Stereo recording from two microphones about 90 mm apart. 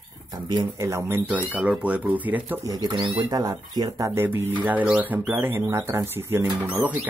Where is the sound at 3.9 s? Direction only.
30° right (ahead or behind).